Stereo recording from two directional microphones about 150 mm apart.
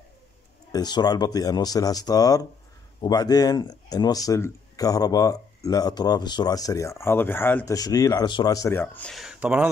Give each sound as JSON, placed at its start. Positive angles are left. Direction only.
{"t": 0.7, "sound": "speech", "side_deg": 25}